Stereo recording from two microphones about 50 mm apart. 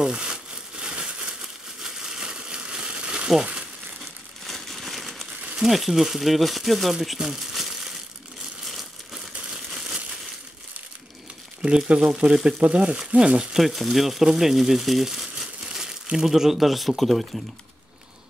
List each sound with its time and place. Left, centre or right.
0.0 s crumpling: centre
4.5 s crumpling: centre
5.6 s speech: centre
8.6 s crumpling: centre
11.6 s speech: centre
13.6 s speech: centre